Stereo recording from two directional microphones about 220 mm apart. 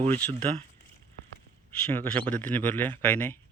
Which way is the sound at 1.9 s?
5° left (ahead or behind).